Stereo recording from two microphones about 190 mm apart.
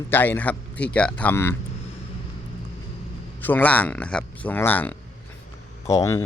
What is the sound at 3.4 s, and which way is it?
A man's voice, 10° left (ahead or behind).